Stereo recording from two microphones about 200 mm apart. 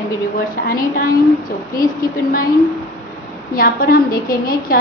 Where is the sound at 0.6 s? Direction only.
45° left (ahead or behind).